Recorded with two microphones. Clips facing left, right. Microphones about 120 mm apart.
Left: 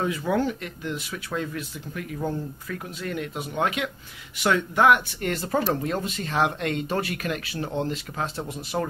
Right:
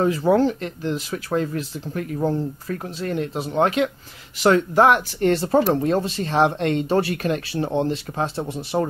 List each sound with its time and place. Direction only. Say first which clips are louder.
0.0 s speech: right 7 dB; 35° right (ahead or behind)